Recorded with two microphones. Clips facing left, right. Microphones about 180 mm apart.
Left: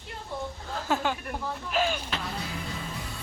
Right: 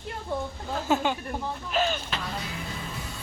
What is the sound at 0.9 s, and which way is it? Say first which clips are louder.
Speech: right 3 dB; 20° right (ahead or behind).